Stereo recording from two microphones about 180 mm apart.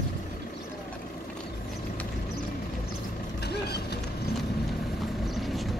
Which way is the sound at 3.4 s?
65° left (ahead or behind).